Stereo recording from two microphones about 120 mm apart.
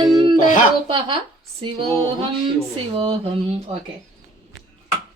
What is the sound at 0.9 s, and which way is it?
Speech, 45° right (ahead or behind).